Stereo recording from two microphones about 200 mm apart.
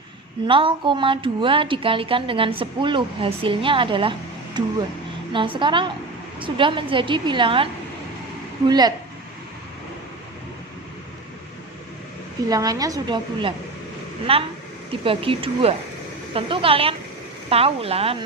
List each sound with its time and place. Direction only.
0.4 s a woman's voice: 25° right (ahead or behind)
12.5 s a woman's voice: 20° right (ahead or behind)